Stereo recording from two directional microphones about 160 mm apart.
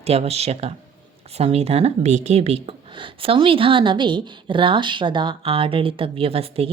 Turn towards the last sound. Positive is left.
turn(degrees=-35)  # may be behind; listen again after turning